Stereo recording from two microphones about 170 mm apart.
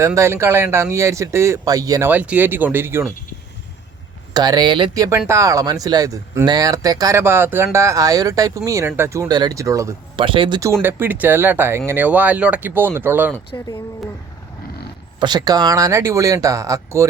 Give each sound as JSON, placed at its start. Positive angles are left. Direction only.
{"t": 0.0, "sound": "speech", "side_deg": -15}
{"t": 4.4, "sound": "speech", "side_deg": -25}
{"t": 10.2, "sound": "speech", "side_deg": -30}
{"t": 10.8, "sound": "speech", "side_deg": -10}
{"t": 13.5, "sound": "speech", "side_deg": 25}
{"t": 15.2, "sound": "speech", "side_deg": -25}